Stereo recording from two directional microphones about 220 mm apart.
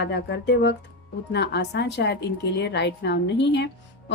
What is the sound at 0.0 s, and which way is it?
Speech, 50° left (ahead or behind).